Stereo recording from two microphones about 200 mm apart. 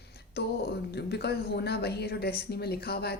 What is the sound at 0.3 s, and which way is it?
Speech, 55° left (ahead or behind).